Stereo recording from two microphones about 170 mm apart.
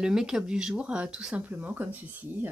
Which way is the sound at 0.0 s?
5° right (ahead or behind).